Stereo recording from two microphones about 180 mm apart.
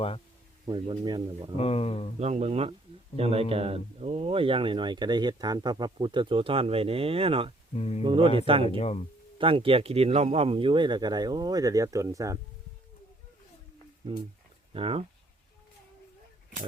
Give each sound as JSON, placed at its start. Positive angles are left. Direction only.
{"t": 0.6, "sound": "speech", "side_deg": -25}
{"t": 1.5, "sound": "speech", "side_deg": 35}
{"t": 2.1, "sound": "speech", "side_deg": -35}
{"t": 7.8, "sound": "speech", "side_deg": 35}
{"t": 8.0, "sound": "speech", "side_deg": -30}
{"t": 8.8, "sound": "speech", "side_deg": 35}
{"t": 9.4, "sound": "speech", "side_deg": -30}
{"t": 14.7, "sound": "speech", "side_deg": -30}